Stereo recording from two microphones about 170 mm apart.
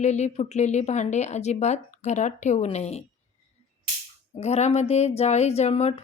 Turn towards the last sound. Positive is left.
turn(degrees=40)  # may be behind; listen again after turning